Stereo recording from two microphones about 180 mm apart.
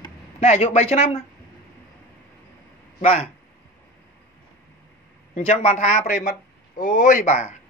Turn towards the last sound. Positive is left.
turn(degrees=40)  # may be behind; listen again after turning